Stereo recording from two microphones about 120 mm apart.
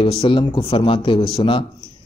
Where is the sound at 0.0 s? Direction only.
50° left (ahead or behind).